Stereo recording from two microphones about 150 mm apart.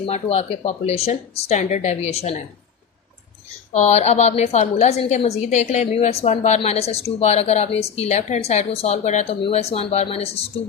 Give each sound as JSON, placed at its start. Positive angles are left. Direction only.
{"t": 0.0, "sound": "a woman's voice", "side_deg": 45}
{"t": 3.7, "sound": "a woman's voice", "side_deg": 45}